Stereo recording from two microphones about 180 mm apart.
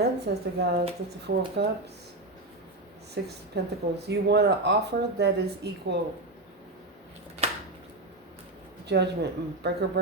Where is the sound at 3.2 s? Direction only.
70° right (ahead or behind).